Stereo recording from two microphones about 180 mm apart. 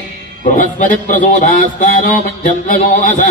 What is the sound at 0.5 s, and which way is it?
A man's voice, 50° left (ahead or behind).